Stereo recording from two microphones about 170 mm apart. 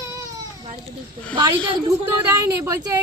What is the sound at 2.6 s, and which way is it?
Speech, 15° right (ahead or behind).